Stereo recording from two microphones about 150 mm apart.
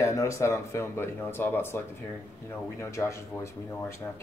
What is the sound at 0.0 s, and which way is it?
Speech, 20° left (ahead or behind).